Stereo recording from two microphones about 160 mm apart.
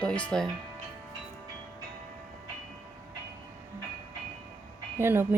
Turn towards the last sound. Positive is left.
turn(degrees=-15)  # may be behind; listen again after turning